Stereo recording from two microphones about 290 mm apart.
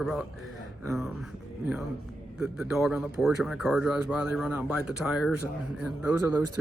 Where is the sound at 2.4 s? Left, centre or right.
Centre.